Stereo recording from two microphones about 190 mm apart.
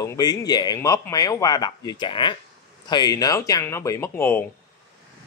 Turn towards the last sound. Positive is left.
turn(degrees=10)  # may be behind; listen again after turning